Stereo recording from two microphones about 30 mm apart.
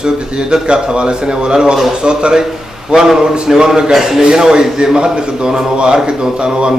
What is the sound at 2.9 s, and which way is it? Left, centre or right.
A man's voice, centre.